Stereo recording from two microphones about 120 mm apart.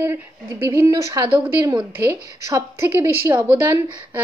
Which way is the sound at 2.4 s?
25° right (ahead or behind).